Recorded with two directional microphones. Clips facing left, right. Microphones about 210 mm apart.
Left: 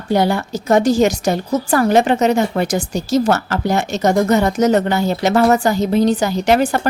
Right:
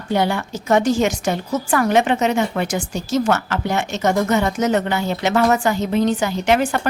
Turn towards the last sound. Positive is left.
turn(degrees=35)  # may be behind; listen again after turning